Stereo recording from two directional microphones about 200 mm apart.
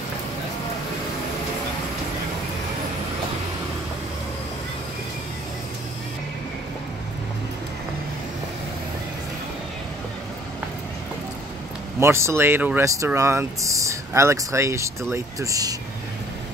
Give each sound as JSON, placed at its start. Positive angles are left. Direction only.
{"t": 12.0, "sound": "speech", "side_deg": -15}